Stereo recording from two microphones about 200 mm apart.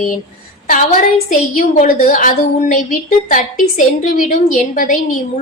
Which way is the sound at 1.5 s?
40° left (ahead or behind).